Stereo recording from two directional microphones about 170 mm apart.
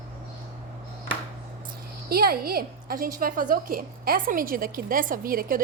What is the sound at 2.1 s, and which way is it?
A woman's voice, 65° right (ahead or behind).